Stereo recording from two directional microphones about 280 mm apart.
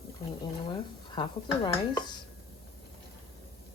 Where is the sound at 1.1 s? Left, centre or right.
Centre.